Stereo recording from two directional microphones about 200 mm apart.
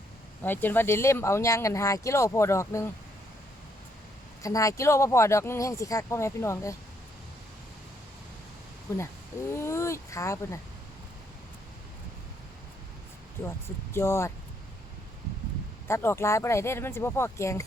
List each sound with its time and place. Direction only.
0.4 s speech: 10° left (ahead or behind)
4.4 s speech: 15° left (ahead or behind)
8.9 s speech: 15° left (ahead or behind)
13.9 s speech: 15° left (ahead or behind)
15.9 s speech: 15° left (ahead or behind)